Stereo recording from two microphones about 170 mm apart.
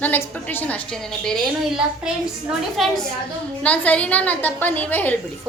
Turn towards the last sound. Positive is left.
turn(degrees=10)  # may be behind; listen again after turning